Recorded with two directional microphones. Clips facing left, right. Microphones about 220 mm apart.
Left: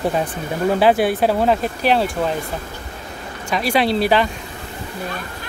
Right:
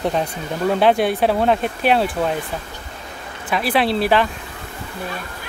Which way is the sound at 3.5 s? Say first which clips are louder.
Left 1 dB; centre (ahead or behind).